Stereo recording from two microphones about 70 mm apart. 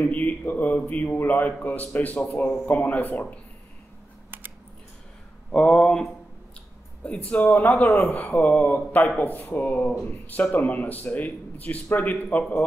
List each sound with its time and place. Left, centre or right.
0.0 s a man's voice: left
5.5 s a sound: centre
7.1 s speech: centre